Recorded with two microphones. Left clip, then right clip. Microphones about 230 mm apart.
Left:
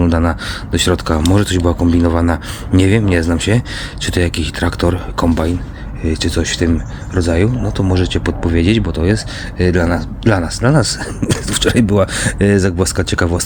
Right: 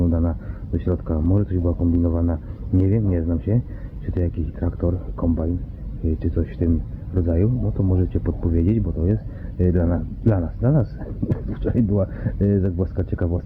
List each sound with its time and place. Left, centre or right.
0.0 s speech: left
6.4 s speech: centre